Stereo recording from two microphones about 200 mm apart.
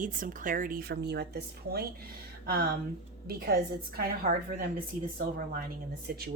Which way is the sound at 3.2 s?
50° right (ahead or behind).